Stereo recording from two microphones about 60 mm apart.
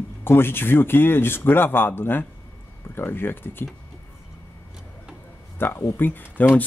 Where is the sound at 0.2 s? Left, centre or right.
Left.